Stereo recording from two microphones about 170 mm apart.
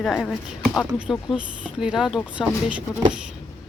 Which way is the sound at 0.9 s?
5° right (ahead or behind).